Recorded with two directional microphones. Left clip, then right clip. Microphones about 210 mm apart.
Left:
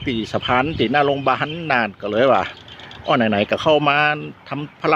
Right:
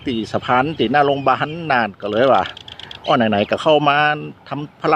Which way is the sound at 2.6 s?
30° right (ahead or behind).